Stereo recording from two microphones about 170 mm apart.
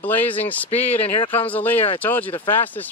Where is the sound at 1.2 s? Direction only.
30° left (ahead or behind).